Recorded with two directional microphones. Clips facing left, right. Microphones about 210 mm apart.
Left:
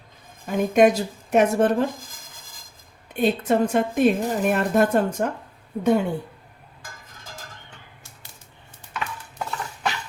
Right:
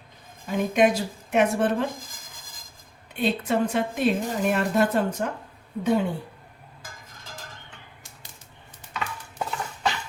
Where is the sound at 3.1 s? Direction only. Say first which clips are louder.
Left 4 dB; 45° left (ahead or behind).